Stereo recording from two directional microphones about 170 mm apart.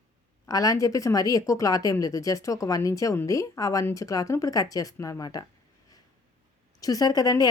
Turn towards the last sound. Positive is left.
turn(degrees=20)  # may be behind; listen again after turning